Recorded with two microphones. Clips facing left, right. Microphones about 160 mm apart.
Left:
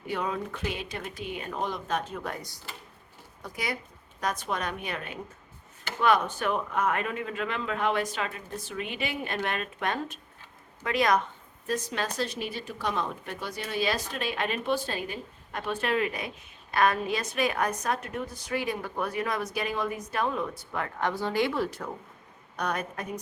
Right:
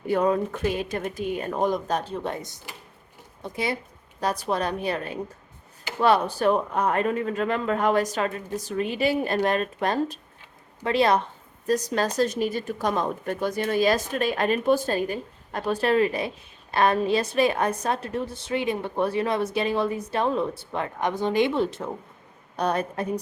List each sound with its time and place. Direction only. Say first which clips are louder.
0.1 s a woman's voice: right 9 dB; 45° right (ahead or behind)